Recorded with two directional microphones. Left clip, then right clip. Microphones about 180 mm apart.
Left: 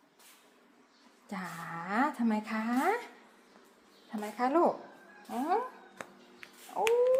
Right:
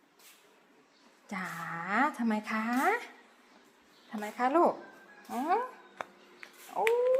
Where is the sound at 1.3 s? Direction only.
10° right (ahead or behind).